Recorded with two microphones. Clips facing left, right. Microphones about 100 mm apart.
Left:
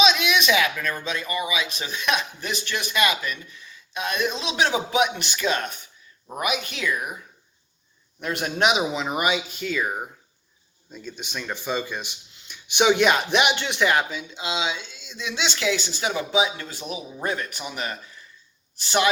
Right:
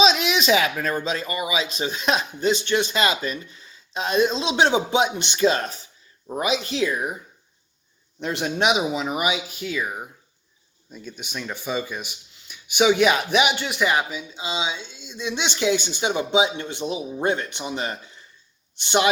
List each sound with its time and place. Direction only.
0.0 s speech: 30° right (ahead or behind)
8.2 s speech: 20° right (ahead or behind)
9.1 s speech: 10° right (ahead or behind)
11.5 s speech: 10° right (ahead or behind)